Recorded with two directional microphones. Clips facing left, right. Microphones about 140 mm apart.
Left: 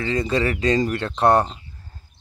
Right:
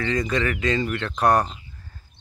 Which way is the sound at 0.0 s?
30° left (ahead or behind).